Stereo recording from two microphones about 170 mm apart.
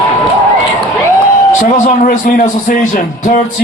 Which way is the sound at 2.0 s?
55° left (ahead or behind).